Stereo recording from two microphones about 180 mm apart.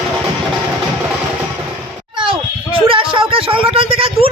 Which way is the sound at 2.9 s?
30° right (ahead or behind).